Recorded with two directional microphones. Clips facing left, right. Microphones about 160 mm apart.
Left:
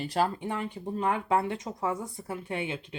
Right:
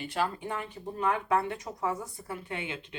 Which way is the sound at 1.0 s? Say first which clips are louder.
Left 1 dB; 25° left (ahead or behind).